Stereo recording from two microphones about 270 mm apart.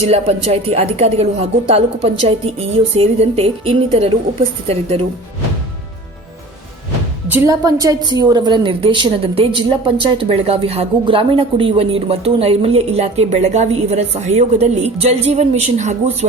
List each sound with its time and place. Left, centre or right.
0.0 s a woman's voice: right
7.3 s a woman's voice: centre; by 16.1 s right